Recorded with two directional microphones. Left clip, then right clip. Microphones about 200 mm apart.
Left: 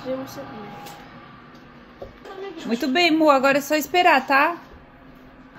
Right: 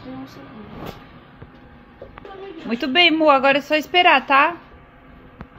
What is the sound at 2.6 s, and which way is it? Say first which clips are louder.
A woman's voice: right 4 dB; 10° left (ahead or behind).